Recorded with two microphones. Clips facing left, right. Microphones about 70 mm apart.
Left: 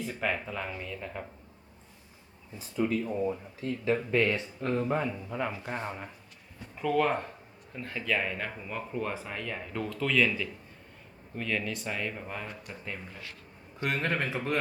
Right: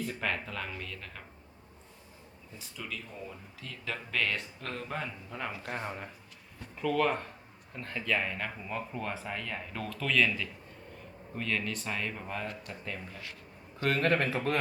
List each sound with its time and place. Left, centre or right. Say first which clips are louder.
0.0 s speech: left 2 dB; centre
2.6 s speech: left 13 dB; left
5.3 s speech: left 4 dB; centre